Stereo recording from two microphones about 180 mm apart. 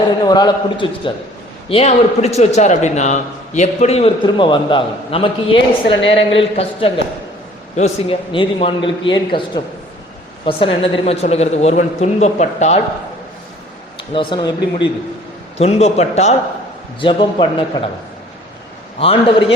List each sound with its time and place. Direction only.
0.3 s a man's voice: 25° left (ahead or behind)
1.7 s a man's voice: 35° left (ahead or behind)
14.1 s a man's voice: 25° left (ahead or behind)
15.5 s a man's voice: 35° left (ahead or behind)
17.0 s a man's voice: 30° left (ahead or behind)
18.9 s a man's voice: 30° left (ahead or behind)